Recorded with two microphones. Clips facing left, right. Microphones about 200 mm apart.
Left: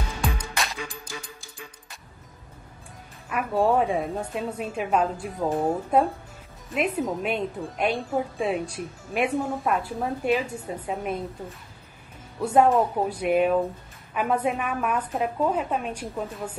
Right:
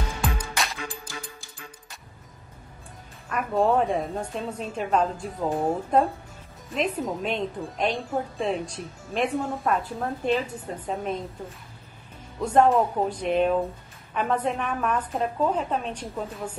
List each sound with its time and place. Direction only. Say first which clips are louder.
0.2 s music: left 1 dB; centre (ahead or behind)
3.3 s a woman's voice: even; 5° left (ahead or behind)
12.4 s a woman's voice: even; 10° left (ahead or behind)